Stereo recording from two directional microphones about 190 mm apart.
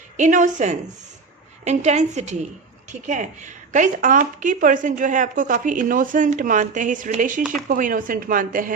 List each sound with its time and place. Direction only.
0.2 s a woman's voice: 40° right (ahead or behind)